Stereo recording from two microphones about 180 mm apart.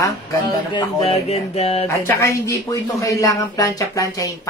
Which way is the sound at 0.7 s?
35° left (ahead or behind).